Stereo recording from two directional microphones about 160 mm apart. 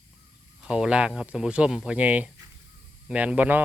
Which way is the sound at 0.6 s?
5° right (ahead or behind).